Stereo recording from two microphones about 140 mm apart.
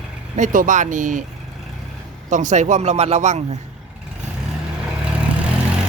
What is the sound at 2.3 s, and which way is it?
Speech, 60° right (ahead or behind).